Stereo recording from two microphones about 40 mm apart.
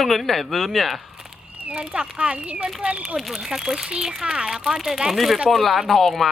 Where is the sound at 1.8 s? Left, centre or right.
Right.